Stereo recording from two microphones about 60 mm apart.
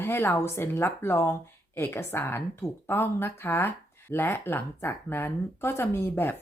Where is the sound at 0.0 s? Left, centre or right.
Left.